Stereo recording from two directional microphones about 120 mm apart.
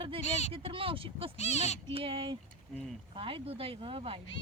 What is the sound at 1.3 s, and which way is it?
Speech, 70° left (ahead or behind).